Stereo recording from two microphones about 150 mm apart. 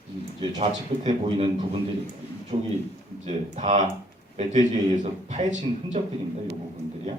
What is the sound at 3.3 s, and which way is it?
A man's voice, 55° right (ahead or behind).